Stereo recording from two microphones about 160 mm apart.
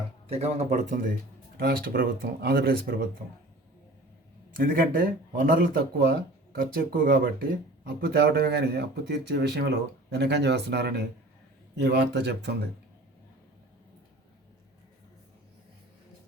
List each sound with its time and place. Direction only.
0.3 s speech: 40° right (ahead or behind)
1.5 s speech: 65° right (ahead or behind)
4.5 s speech: 60° right (ahead or behind)
7.9 s speech: 80° right